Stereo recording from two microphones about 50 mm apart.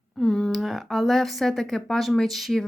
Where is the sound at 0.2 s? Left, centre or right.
Centre.